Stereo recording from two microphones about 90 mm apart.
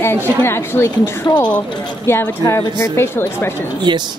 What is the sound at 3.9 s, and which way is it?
Speech, 60° right (ahead or behind).